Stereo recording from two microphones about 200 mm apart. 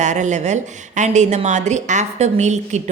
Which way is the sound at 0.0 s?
35° right (ahead or behind).